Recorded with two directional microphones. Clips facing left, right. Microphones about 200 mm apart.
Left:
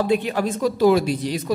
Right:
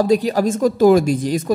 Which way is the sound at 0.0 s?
40° right (ahead or behind).